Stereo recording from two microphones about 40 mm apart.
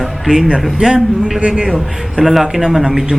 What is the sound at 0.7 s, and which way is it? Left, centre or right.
Speech, right.